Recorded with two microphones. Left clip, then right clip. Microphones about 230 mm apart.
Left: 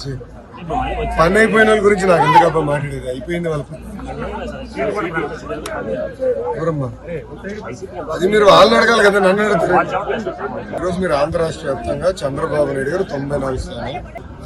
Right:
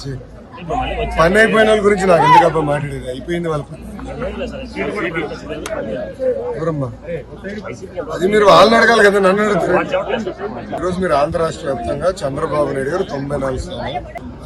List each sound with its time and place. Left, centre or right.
0.7 s a man's voice: centre
6.5 s a man's voice: centre